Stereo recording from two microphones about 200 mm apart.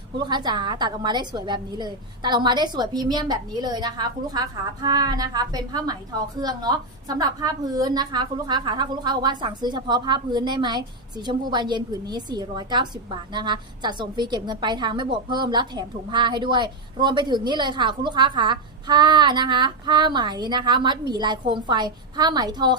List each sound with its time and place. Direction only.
0.2 s a woman's voice: 20° right (ahead or behind)